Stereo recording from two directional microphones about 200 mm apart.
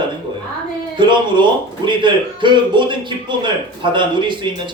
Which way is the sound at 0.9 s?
25° right (ahead or behind).